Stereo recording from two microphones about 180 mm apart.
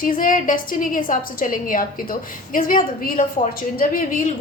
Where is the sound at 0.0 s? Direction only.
50° left (ahead or behind).